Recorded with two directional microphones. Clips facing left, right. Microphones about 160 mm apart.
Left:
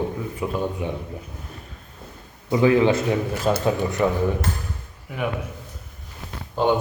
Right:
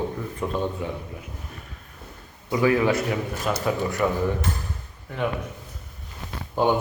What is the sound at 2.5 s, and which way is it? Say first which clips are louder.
A man's voice: left 3 dB; 25° left (ahead or behind).